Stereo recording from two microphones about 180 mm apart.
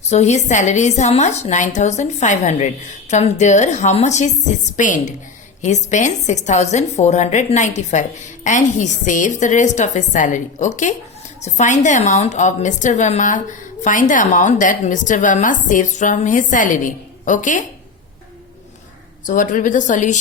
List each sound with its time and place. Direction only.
0.1 s a woman's voice: 40° left (ahead or behind)
19.2 s a woman's voice: 45° left (ahead or behind)